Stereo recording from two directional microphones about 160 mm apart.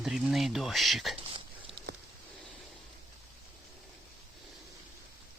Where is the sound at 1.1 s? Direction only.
35° right (ahead or behind).